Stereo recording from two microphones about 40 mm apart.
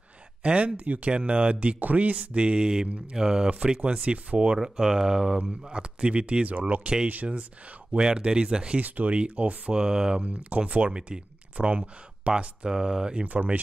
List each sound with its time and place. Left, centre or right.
0.4 s speech: right
0.7 s speech: right
2.3 s speech: right
3.4 s speech: right
4.6 s speech: centre
5.4 s speech: right
7.1 s speech: right
7.9 s speech: right
8.7 s speech: right
9.8 s speech: centre
10.2 s speech: right
12.6 s speech: centre
13.2 s speech: right